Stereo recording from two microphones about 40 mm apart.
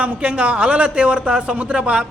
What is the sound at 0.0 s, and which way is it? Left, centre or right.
Speech, right.